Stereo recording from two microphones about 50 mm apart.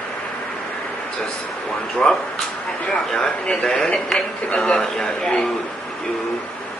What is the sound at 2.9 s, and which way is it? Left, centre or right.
A man's voice, centre.